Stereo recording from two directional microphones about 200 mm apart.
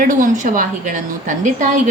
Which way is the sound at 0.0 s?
40° right (ahead or behind).